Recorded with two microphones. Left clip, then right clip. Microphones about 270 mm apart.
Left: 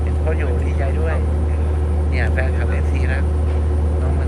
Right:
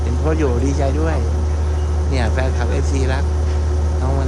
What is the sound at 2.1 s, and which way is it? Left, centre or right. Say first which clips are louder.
Speech: right 2 dB; centre.